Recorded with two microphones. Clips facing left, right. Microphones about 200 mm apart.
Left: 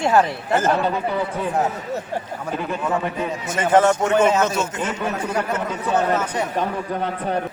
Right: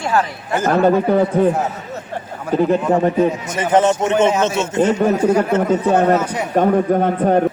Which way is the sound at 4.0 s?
20° right (ahead or behind).